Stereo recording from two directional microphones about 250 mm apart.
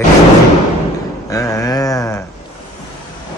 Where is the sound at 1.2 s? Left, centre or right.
Centre.